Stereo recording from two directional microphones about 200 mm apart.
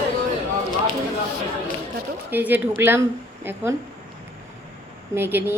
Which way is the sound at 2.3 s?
10° right (ahead or behind).